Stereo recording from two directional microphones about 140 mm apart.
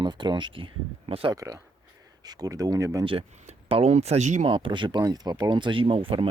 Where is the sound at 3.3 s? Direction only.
55° right (ahead or behind).